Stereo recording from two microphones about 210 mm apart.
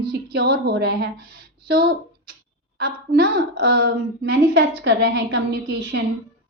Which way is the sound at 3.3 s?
50° right (ahead or behind).